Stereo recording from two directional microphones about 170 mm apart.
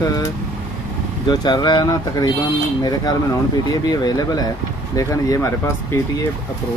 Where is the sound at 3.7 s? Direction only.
25° left (ahead or behind).